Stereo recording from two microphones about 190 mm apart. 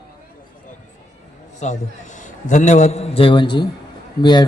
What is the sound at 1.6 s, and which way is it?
A man's voice, 40° left (ahead or behind).